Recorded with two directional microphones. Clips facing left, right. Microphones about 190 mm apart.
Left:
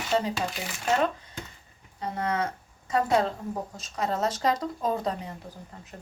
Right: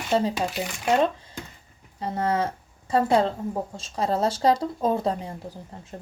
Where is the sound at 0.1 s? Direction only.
30° right (ahead or behind).